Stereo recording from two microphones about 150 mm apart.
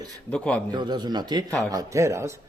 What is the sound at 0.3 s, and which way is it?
Speech, 5° left (ahead or behind).